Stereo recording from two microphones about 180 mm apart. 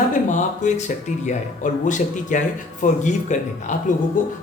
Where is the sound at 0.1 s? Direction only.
45° left (ahead or behind).